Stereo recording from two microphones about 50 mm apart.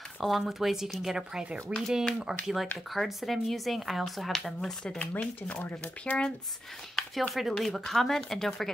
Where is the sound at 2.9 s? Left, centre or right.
Centre.